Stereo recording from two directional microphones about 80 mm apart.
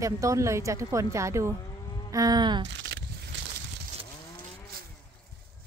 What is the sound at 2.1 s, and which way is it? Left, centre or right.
Music, right.